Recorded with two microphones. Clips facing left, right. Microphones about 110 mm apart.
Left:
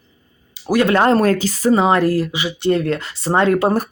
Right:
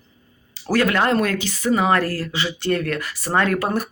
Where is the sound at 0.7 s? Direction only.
20° left (ahead or behind).